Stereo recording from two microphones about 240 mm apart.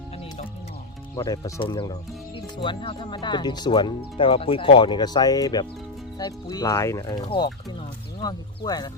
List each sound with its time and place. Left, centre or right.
1.1 s speech: centre